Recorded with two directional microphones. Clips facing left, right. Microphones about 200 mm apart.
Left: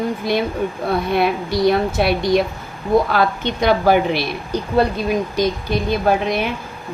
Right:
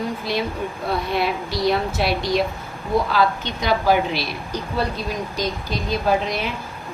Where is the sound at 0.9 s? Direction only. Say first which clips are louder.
Left 4 dB; 55° left (ahead or behind).